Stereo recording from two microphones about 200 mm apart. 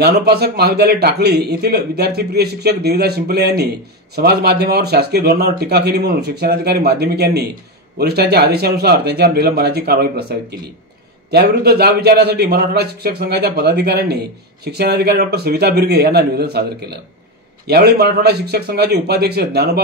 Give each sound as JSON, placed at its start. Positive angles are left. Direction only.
{"t": 0.0, "sound": "a man's voice", "side_deg": -50}
{"t": 11.2, "sound": "a man's voice", "side_deg": -55}